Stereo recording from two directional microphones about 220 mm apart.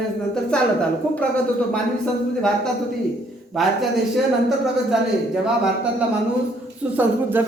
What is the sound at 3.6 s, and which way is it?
Speech, centre (ahead or behind).